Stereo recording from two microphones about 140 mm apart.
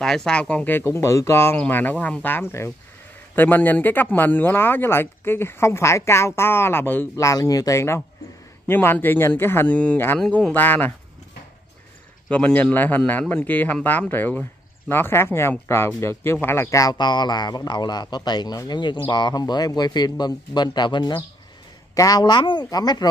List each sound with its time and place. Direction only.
0.0 s speech: 5° left (ahead or behind)
12.3 s a man's voice: 10° left (ahead or behind); by 23.0 s 30° left (ahead or behind)